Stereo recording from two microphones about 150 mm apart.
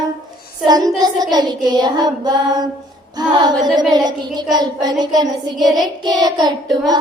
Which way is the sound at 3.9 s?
30° right (ahead or behind).